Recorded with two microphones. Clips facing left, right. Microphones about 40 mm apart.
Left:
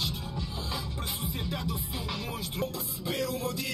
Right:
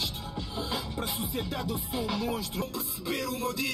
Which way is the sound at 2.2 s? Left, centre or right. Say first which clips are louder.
Right 4 dB; left.